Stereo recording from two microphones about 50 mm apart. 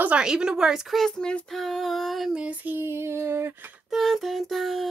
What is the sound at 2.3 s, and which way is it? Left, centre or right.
Female singing, right.